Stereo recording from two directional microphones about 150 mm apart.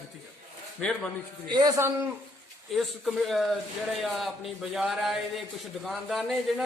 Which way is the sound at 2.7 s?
Centre (ahead or behind).